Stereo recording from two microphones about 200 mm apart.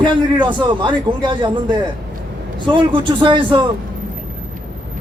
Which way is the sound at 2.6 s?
25° right (ahead or behind).